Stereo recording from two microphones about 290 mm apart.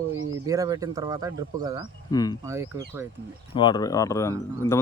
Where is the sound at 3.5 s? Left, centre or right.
Centre.